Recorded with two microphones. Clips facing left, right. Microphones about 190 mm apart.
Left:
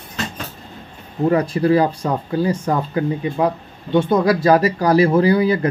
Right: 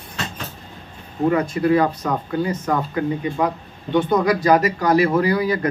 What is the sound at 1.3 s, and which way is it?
Speech, 35° left (ahead or behind).